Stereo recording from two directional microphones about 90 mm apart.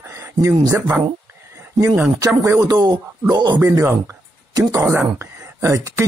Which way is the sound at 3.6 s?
25° right (ahead or behind).